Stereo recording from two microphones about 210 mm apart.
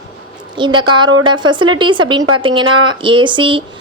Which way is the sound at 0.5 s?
20° right (ahead or behind).